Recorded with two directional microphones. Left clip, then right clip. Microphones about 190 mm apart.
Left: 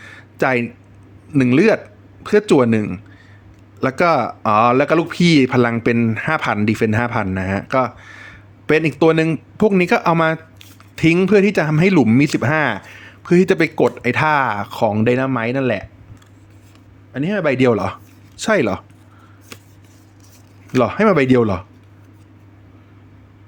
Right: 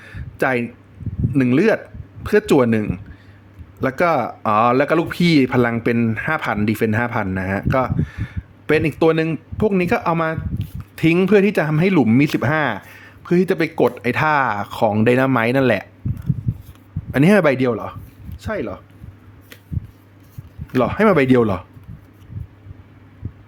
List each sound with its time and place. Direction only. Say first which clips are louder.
0.0 s a sound: left 2 dB; 5° left (ahead or behind)
1.3 s speech: left 2 dB; 5° left (ahead or behind); by 15.9 s 10° right (ahead or behind)
17.1 s a man's voice: right 7 dB; 25° right (ahead or behind)
17.6 s speech: left 5 dB; 15° left (ahead or behind)
20.7 s speech: left 1 dB; centre (ahead or behind)